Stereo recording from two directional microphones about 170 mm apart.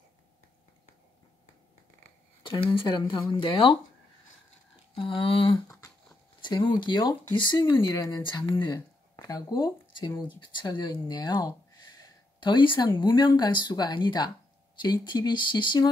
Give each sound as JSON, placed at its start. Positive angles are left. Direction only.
{"t": 2.4, "sound": "speech", "side_deg": 30}
{"t": 4.9, "sound": "speech", "side_deg": 30}